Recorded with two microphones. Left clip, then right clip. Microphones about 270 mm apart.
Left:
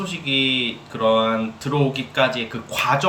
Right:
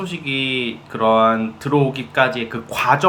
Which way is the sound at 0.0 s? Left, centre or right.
Centre.